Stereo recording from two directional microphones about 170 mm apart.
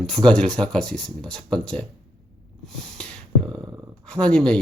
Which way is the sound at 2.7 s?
5° left (ahead or behind).